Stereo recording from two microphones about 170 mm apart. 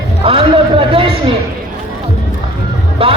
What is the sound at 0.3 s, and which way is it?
Speech, 30° right (ahead or behind).